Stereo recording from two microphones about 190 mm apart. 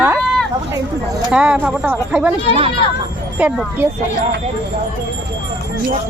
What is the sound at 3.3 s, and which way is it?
Speech, 10° right (ahead or behind).